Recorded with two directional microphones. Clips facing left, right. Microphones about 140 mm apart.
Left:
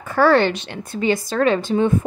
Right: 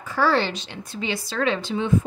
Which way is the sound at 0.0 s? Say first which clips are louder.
Left 6 dB; 55° left (ahead or behind).